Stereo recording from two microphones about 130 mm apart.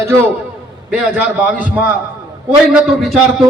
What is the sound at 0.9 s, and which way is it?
A man's voice, 10° right (ahead or behind).